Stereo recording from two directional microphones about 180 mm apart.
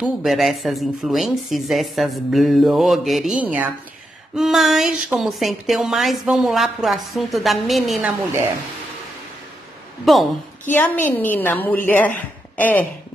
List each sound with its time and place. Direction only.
0.0 s a woman's voice: centre (ahead or behind)
10.1 s a woman's voice: centre (ahead or behind)
10.7 s a woman's voice: 10° left (ahead or behind)